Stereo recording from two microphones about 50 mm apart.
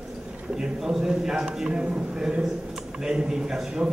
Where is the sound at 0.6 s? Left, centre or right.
Centre.